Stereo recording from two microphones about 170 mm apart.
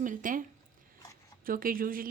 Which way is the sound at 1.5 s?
55° right (ahead or behind).